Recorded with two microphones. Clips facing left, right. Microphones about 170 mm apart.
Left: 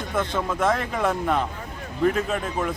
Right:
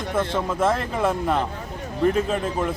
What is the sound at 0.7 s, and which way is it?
Speech, 5° right (ahead or behind).